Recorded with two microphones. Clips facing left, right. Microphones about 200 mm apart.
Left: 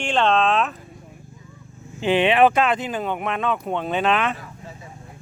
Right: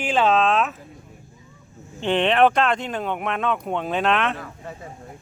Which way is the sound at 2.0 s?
5° left (ahead or behind).